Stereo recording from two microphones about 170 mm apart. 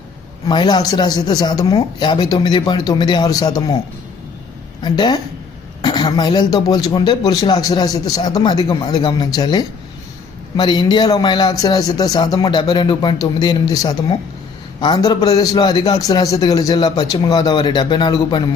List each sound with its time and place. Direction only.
0.4 s speech: 25° left (ahead or behind)
4.8 s speech: 25° left (ahead or behind)